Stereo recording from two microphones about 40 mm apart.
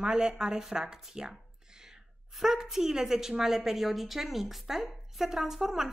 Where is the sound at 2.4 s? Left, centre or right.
Centre.